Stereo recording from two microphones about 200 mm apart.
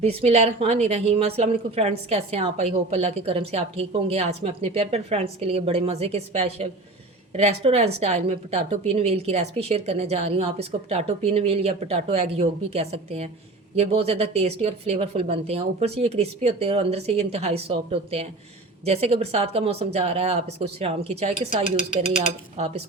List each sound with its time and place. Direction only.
0.0 s a woman's voice: 30° right (ahead or behind)